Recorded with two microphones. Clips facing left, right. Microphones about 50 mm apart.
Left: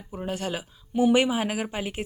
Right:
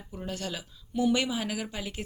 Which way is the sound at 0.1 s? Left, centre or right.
Left.